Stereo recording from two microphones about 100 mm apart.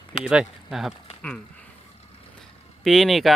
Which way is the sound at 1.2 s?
10° left (ahead or behind).